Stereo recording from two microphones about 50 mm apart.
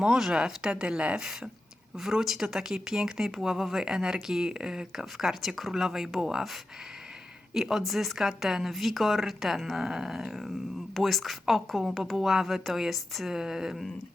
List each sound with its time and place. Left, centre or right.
0.2 s speech: centre
2.0 s speech: centre
7.5 s a woman's voice: centre